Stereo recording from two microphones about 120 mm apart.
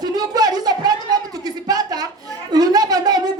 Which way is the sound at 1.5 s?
35° right (ahead or behind).